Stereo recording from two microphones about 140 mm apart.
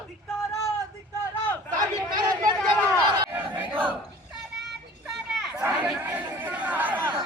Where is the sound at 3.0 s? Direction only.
30° right (ahead or behind).